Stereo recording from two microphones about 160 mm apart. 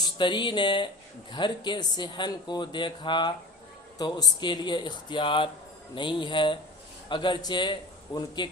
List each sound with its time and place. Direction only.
0.2 s speech: 30° left (ahead or behind)